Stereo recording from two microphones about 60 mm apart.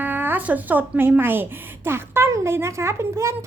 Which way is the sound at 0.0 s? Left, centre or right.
Right.